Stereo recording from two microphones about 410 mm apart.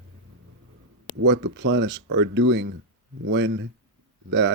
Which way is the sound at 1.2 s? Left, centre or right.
Right.